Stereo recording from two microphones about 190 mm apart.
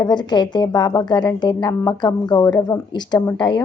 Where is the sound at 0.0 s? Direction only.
20° left (ahead or behind).